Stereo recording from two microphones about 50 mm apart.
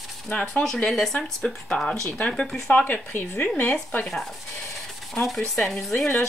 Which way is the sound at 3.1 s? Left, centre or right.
Left.